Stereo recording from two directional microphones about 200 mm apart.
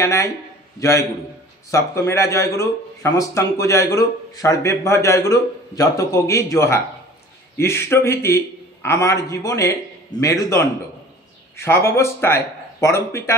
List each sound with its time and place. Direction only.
0.0 s a man's voice: 15° left (ahead or behind)